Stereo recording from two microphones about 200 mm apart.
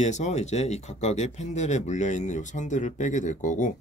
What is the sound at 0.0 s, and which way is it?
Speech, 35° left (ahead or behind).